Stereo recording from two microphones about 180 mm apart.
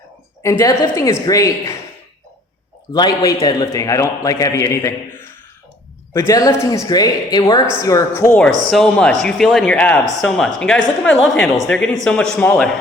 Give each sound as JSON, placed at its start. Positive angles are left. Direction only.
{"t": 0.4, "sound": "a woman's voice", "side_deg": 15}
{"t": 2.9, "sound": "a man's voice", "side_deg": 25}